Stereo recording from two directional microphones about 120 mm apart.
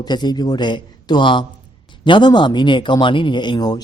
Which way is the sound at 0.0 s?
35° left (ahead or behind).